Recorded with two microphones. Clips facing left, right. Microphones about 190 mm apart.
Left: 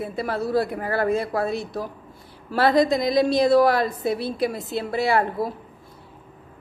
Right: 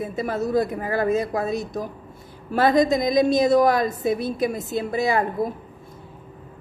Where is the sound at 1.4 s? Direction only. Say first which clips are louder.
Right 1 dB; 45° right (ahead or behind).